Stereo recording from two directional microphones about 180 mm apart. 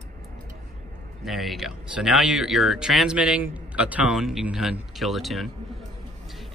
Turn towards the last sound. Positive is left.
turn(degrees=0)  # may be behind; listen again after turning